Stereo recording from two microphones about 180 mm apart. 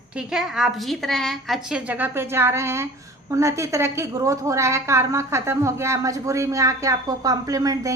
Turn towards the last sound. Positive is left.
turn(degrees=-20)  # may be behind; listen again after turning